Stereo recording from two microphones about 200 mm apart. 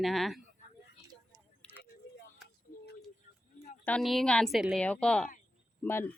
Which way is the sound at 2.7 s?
40° left (ahead or behind).